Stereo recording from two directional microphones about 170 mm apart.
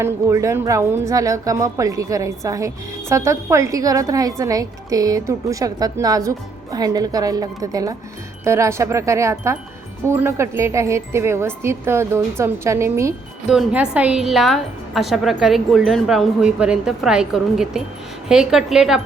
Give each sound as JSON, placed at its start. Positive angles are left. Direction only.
{"t": 0.0, "sound": "speech", "side_deg": -15}
{"t": 13.5, "sound": "a woman's voice", "side_deg": -5}